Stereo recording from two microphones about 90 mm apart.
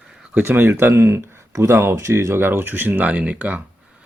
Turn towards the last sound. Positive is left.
turn(degrees=-15)  # may be behind; listen again after turning